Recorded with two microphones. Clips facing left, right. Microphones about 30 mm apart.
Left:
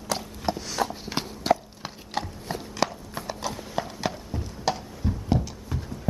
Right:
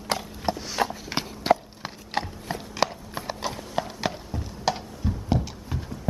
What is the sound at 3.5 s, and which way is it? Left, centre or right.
Clip-clop, centre.